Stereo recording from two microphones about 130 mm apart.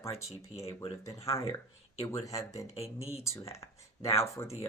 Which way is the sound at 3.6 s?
30° left (ahead or behind).